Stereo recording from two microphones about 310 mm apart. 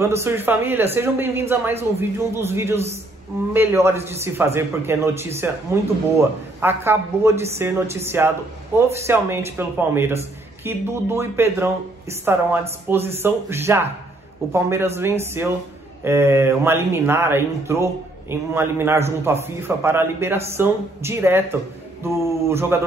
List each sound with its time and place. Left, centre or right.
0.0 s speech: centre